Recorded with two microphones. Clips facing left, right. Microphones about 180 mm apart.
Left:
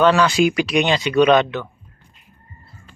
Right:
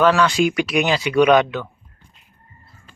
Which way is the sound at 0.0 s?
Centre (ahead or behind).